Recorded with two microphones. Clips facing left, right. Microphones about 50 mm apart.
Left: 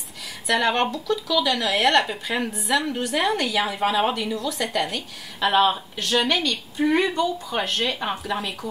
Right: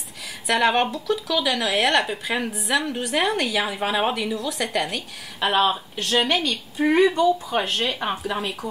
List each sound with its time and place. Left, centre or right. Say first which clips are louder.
0.5 s speech: right 1 dB; centre
0.7 s a woman's voice: right 1 dB; centre
3.8 s speech: left 2 dB; centre
4.2 s a woman's voice: even; centre
7.0 s speech: right 4 dB; right
7.4 s speech: right 1 dB; centre